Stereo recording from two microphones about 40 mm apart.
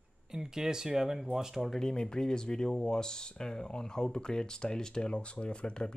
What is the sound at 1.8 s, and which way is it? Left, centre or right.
Speech, centre.